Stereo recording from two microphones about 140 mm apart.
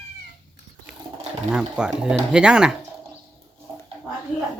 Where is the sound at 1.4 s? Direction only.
5° right (ahead or behind).